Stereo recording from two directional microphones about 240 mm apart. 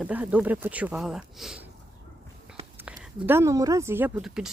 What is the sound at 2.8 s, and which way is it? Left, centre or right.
Speech, centre.